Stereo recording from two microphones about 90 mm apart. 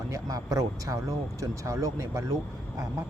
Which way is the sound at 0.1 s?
40° right (ahead or behind).